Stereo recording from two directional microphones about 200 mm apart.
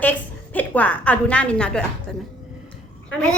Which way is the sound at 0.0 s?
10° left (ahead or behind).